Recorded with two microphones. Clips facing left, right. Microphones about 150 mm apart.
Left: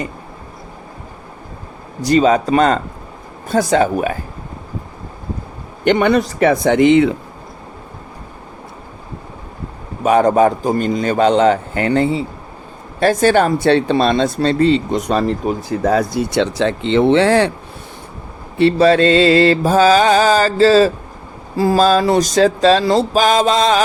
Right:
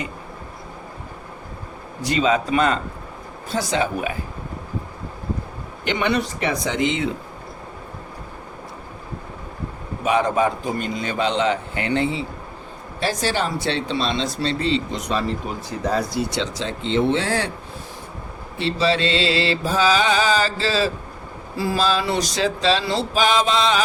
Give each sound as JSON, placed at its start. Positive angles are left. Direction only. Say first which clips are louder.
{"t": 2.0, "sound": "a man's voice", "louder": "left 7 dB", "side_deg": 40}
{"t": 3.5, "sound": "mantra", "louder": "left 8 dB", "side_deg": 50}
{"t": 5.8, "sound": "mantra", "louder": "left 8 dB", "side_deg": 50}
{"t": 10.0, "sound": "mantra", "louder": "left 8 dB", "side_deg": 45}
{"t": 13.0, "sound": "speech", "louder": "left 10 dB", "side_deg": 55}
{"t": 18.5, "sound": "mantra", "louder": "left 10 dB", "side_deg": 55}